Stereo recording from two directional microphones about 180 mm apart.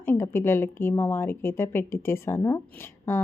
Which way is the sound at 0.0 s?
10° left (ahead or behind).